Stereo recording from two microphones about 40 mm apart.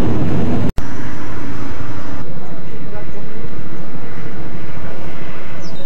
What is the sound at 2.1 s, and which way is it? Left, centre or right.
Vehicle, centre.